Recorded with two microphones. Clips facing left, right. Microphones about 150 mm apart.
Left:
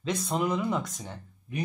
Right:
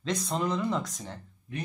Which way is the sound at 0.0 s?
5° left (ahead or behind).